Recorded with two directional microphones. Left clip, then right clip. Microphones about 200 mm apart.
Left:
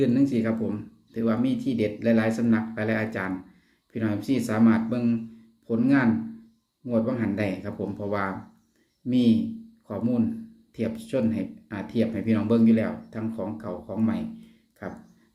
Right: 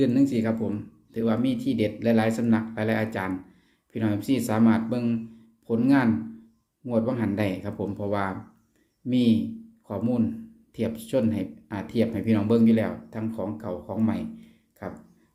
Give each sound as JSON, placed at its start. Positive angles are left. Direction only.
{"t": 0.0, "sound": "speech", "side_deg": -20}